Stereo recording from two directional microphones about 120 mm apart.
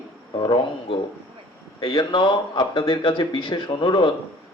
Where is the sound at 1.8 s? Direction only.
40° left (ahead or behind).